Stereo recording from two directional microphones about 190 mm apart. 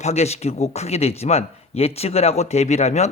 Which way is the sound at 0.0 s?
35° left (ahead or behind).